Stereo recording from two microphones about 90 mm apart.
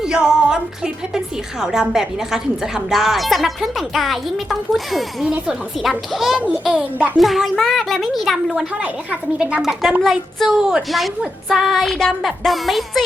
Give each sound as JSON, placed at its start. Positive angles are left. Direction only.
{"t": 0.0, "sound": "a woman's voice", "side_deg": -10}
{"t": 8.8, "sound": "a woman's voice", "side_deg": -15}